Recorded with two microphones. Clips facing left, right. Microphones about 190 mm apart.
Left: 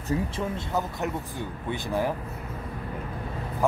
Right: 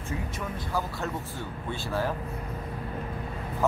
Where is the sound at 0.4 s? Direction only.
20° left (ahead or behind).